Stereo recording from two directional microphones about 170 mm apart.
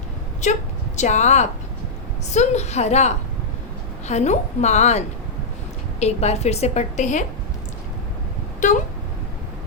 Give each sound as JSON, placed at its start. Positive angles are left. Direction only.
{"t": 0.9, "sound": "a woman's voice", "side_deg": 45}
{"t": 8.6, "sound": "speech", "side_deg": 45}